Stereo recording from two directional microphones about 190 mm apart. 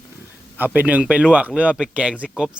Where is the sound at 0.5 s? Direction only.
10° right (ahead or behind).